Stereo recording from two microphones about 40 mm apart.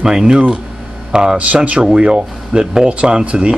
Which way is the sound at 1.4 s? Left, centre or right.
Right.